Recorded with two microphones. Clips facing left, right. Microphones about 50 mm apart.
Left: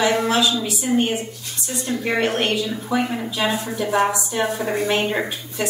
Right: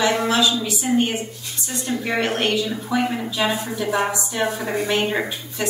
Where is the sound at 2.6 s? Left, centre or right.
Centre.